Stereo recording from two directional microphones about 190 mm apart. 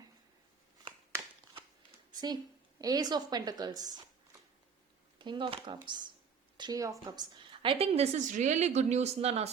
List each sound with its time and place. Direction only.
1.9 s a woman's voice: 20° right (ahead or behind)
5.2 s a woman's voice: 25° right (ahead or behind)